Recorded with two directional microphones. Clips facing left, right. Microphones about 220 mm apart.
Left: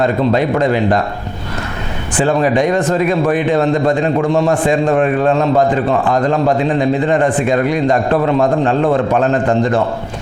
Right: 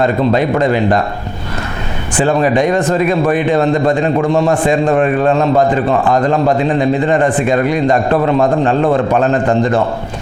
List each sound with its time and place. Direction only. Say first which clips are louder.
0.0 s a man's voice: right 1 dB; 20° right (ahead or behind)
2.2 s a man's voice: right 1 dB; 20° right (ahead or behind)